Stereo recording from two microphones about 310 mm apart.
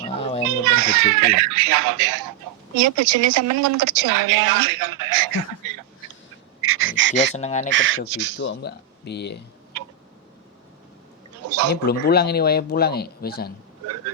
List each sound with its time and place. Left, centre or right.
0.0 s children playing: centre
0.6 s a child's voice: right
2.7 s speech: right
6.6 s speech: right
7.3 s speech: left
7.7 s speech: right
8.4 s speech: left
11.4 s a sound: right
11.9 s speech: left